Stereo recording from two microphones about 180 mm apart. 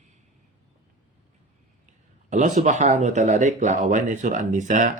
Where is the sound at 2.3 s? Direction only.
45° right (ahead or behind).